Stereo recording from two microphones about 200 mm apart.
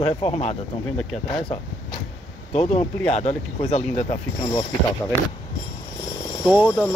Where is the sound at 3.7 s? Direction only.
35° left (ahead or behind).